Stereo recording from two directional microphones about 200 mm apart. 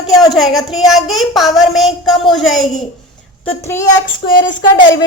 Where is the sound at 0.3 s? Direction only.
Centre (ahead or behind).